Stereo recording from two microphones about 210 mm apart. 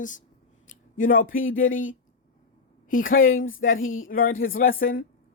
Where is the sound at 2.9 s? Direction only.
40° left (ahead or behind).